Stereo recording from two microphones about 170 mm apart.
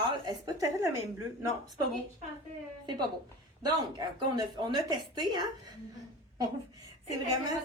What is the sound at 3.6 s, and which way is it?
A woman's voice, 25° right (ahead or behind).